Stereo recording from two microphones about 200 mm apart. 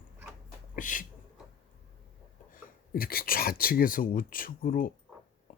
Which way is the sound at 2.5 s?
45° left (ahead or behind).